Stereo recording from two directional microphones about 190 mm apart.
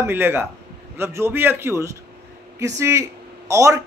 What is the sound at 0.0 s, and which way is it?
A man's voice, 10° right (ahead or behind).